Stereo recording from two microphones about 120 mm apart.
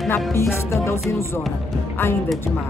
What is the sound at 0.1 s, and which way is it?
Speech, 20° left (ahead or behind).